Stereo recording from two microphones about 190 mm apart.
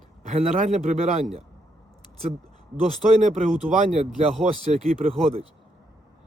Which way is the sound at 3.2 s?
40° right (ahead or behind).